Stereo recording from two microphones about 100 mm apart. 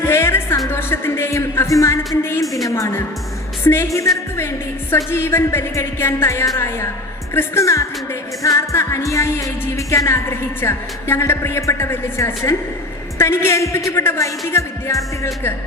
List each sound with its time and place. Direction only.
0.1 s music: 25° left (ahead or behind)
2.6 s a woman's voice: 35° left (ahead or behind)
3.6 s music: 25° left (ahead or behind)